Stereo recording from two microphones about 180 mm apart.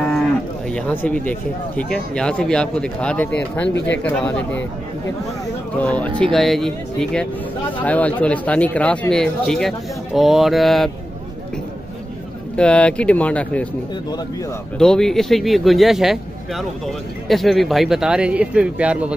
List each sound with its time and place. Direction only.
0.1 s speech: 5° left (ahead or behind)
3.7 s speech: 85° left
4.0 s speech: 5° left (ahead or behind)
5.8 s speech: 5° left (ahead or behind)
12.5 s speech: 5° left (ahead or behind)
14.8 s speech: 5° left (ahead or behind)